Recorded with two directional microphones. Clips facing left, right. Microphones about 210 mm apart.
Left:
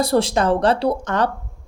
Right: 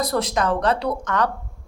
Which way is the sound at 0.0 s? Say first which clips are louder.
Left 4 dB; 30° left (ahead or behind).